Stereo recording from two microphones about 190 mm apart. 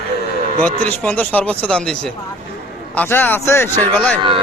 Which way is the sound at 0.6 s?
10° left (ahead or behind).